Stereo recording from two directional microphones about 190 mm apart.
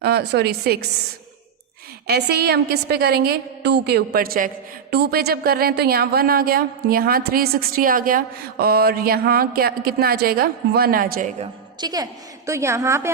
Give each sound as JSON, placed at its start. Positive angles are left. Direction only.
{"t": 0.0, "sound": "a woman's voice", "side_deg": -60}
{"t": 2.0, "sound": "a woman's voice", "side_deg": -60}
{"t": 11.8, "sound": "a woman's voice", "side_deg": -20}